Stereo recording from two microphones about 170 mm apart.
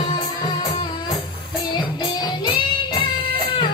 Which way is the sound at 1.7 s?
25° left (ahead or behind).